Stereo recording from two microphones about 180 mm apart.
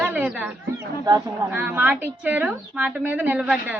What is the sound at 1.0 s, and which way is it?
A woman's voice, 15° right (ahead or behind).